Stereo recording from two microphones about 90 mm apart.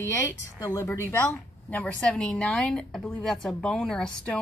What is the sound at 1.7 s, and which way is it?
Speech, 15° left (ahead or behind).